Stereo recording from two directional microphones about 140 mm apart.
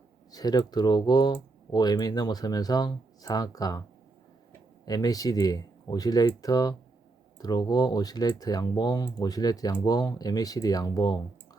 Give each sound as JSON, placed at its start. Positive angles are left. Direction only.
{"t": 0.3, "sound": "speech", "side_deg": 25}
{"t": 4.9, "sound": "speech", "side_deg": 25}